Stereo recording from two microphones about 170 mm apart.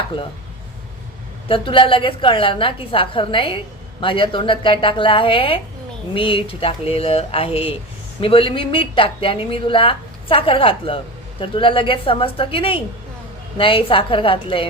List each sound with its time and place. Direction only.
1.5 s speech: 30° left (ahead or behind)